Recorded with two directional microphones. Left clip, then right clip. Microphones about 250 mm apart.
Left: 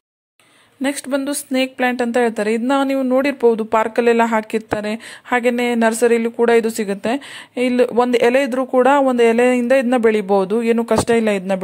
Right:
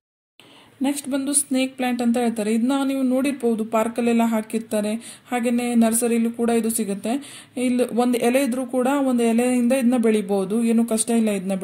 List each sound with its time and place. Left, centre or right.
0.8 s speech: left